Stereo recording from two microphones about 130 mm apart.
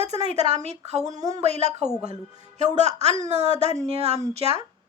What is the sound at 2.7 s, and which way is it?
Speech, 60° right (ahead or behind).